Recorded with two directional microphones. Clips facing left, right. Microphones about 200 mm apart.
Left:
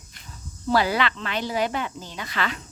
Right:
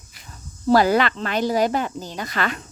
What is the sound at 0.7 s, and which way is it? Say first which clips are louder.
Speech: right 6 dB; 45° right (ahead or behind).